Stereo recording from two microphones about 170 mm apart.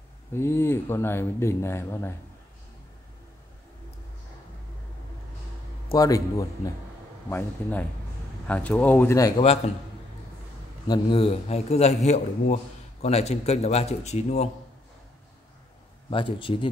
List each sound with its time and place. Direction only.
0.3 s speech: 15° left (ahead or behind)
5.9 s speech: 20° left (ahead or behind)
10.9 s speech: 30° left (ahead or behind)
16.1 s speech: 30° left (ahead or behind)